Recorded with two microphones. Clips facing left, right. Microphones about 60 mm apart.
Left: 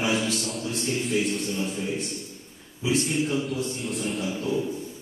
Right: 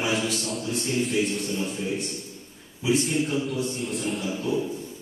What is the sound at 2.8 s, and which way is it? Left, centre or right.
Speech, centre.